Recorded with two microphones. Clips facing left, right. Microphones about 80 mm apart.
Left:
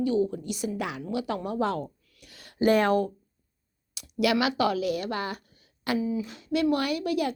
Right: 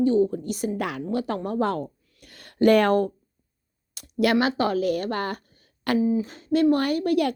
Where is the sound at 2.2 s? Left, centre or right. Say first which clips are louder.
Right 5 dB; right.